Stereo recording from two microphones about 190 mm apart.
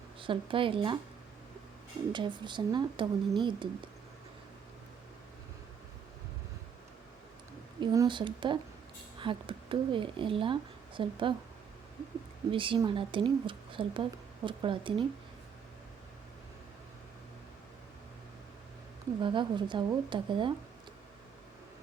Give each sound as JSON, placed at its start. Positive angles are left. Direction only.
{"t": 0.2, "sound": "speech", "side_deg": -25}
{"t": 2.1, "sound": "speech", "side_deg": -25}
{"t": 7.8, "sound": "speech", "side_deg": -25}
{"t": 12.5, "sound": "speech", "side_deg": -25}
{"t": 19.2, "sound": "speech", "side_deg": -25}